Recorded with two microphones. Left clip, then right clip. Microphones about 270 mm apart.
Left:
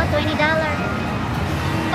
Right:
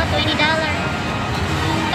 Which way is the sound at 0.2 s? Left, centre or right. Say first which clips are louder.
Right 4 dB; centre.